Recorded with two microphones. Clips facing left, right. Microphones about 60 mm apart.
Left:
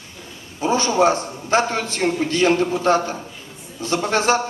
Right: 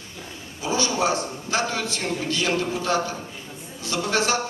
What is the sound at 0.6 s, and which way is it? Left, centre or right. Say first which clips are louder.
A man's voice: left 6 dB; left.